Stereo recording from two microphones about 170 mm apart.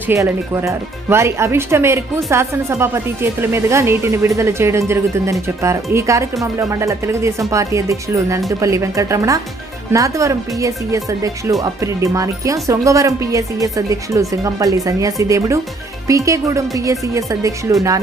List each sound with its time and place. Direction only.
0.1 s speech: 15° right (ahead or behind)